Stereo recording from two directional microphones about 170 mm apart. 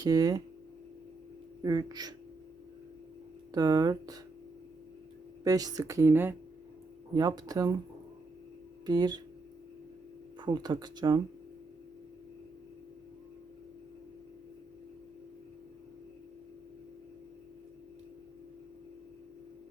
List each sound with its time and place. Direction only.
0.0 s speech: 20° right (ahead or behind)
1.6 s speech: 25° right (ahead or behind)
3.5 s speech: 20° right (ahead or behind)
5.4 s speech: 20° right (ahead or behind)
8.9 s speech: 25° right (ahead or behind)
10.4 s speech: 25° right (ahead or behind)